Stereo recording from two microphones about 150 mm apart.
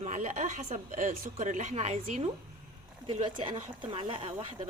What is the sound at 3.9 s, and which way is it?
Speech, 35° right (ahead or behind).